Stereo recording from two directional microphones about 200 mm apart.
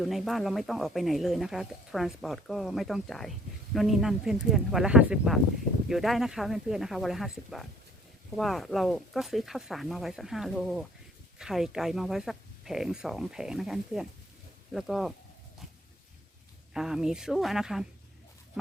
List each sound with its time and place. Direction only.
0.0 s speech: centre (ahead or behind)
16.7 s speech: centre (ahead or behind)